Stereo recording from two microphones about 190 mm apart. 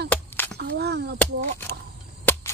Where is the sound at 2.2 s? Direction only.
10° left (ahead or behind).